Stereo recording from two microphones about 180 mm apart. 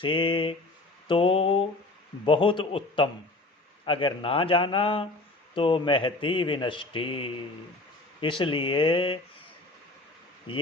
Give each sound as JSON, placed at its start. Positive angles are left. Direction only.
{"t": 0.0, "sound": "speech", "side_deg": 30}
{"t": 1.0, "sound": "mantra", "side_deg": 30}
{"t": 2.2, "sound": "speech", "side_deg": 30}
{"t": 10.5, "sound": "speech", "side_deg": 30}